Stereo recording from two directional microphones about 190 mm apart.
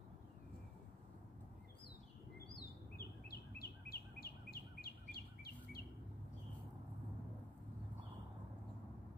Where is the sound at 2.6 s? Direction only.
55° left (ahead or behind).